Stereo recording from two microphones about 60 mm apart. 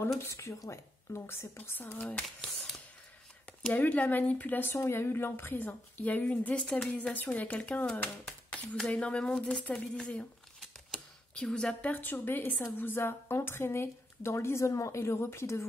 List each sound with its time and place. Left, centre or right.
0.3 s speech: left
1.8 s speech: left
2.2 s speech: centre
3.7 s speech: left
4.7 s a woman's voice: left
8.3 s speech: centre
11.3 s a woman's voice: centre
11.8 s a woman's voice: left
15.0 s speech: left